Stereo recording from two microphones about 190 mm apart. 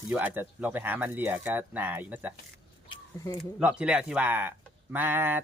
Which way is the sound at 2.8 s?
20° left (ahead or behind).